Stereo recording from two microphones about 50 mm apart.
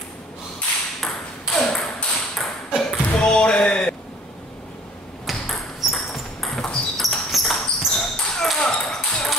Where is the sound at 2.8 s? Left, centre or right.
Centre.